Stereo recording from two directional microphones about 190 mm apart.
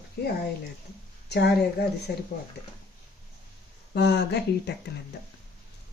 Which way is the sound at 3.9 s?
65° left (ahead or behind).